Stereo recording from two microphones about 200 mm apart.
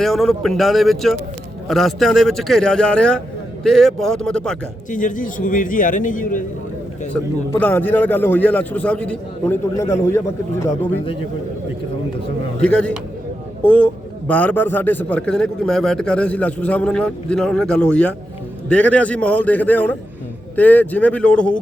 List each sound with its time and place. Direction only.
0.0 s speech: centre (ahead or behind)
4.9 s a man's voice: 40° left (ahead or behind)
7.1 s a man's voice: 10° left (ahead or behind)
12.6 s a man's voice: 5° left (ahead or behind)